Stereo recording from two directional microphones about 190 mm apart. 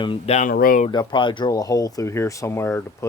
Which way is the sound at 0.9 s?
25° left (ahead or behind).